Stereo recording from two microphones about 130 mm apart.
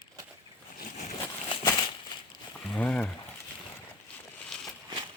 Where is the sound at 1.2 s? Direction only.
35° left (ahead or behind).